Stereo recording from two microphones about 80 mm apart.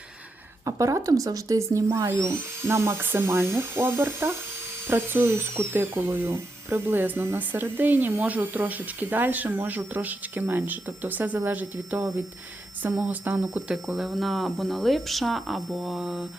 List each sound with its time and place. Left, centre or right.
0.6 s speech: right
13.1 s speech: centre
13.8 s speech: centre